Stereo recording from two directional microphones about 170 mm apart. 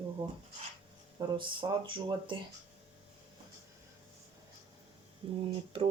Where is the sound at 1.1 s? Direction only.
30° right (ahead or behind).